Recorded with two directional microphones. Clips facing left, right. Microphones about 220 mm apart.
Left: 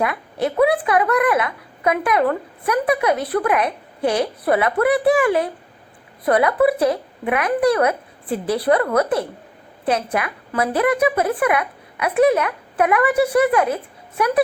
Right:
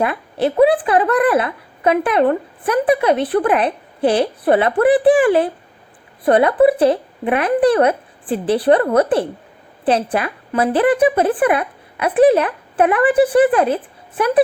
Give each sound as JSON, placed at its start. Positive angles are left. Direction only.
{"t": 0.0, "sound": "a woman's voice", "side_deg": -30}